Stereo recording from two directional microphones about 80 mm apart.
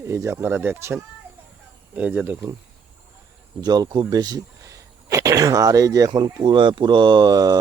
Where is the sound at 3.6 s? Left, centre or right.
Right.